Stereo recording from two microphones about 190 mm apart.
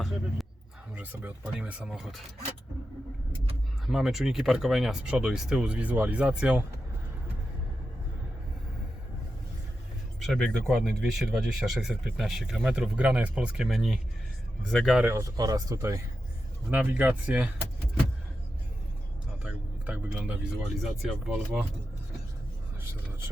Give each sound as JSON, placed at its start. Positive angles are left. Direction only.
{"t": 0.9, "sound": "speech", "side_deg": -5}
{"t": 3.8, "sound": "speech", "side_deg": 0}
{"t": 10.2, "sound": "speech", "side_deg": 0}
{"t": 15.1, "sound": "speech", "side_deg": -20}
{"t": 19.4, "sound": "speech", "side_deg": -5}